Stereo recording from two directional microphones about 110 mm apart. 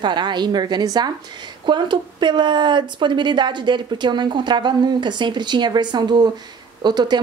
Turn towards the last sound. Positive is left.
turn(degrees=-40)  # may be behind; listen again after turning